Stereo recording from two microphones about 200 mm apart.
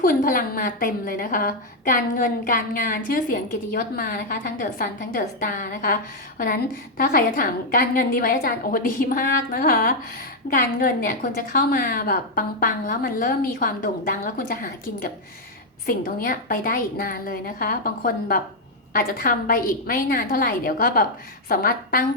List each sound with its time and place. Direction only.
0.0 s a woman's voice: 45° left (ahead or behind)